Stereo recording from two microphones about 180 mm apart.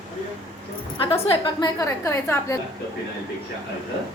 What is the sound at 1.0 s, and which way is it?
A woman's voice, 30° left (ahead or behind).